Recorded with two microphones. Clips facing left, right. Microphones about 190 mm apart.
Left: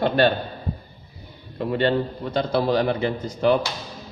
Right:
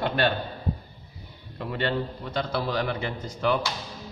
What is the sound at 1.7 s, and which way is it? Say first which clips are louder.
A man's voice: left 6 dB; 30° left (ahead or behind).